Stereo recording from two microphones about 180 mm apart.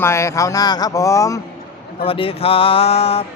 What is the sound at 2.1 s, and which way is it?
Mantra, 30° left (ahead or behind).